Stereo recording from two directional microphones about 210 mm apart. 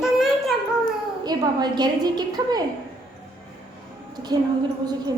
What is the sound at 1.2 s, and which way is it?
A woman's voice, 20° right (ahead or behind).